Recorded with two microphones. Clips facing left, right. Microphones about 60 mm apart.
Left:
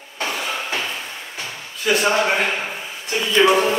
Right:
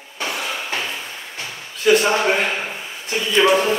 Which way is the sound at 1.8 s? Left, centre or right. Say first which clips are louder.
Right 2 dB; centre.